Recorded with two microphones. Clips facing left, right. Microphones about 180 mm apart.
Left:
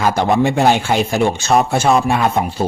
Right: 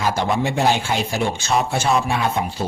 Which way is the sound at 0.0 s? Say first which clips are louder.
Left 6 dB; 55° left (ahead or behind).